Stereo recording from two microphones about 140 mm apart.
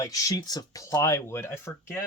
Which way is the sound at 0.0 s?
25° left (ahead or behind).